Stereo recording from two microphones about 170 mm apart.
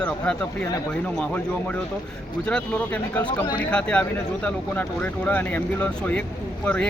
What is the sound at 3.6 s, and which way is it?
Speech, 5° left (ahead or behind).